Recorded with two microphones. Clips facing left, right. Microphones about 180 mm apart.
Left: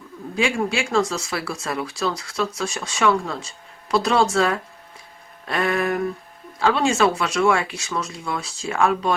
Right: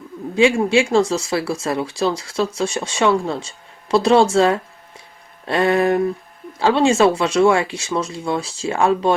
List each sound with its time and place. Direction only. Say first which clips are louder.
0.3 s speech: right 8 dB; 25° right (ahead or behind)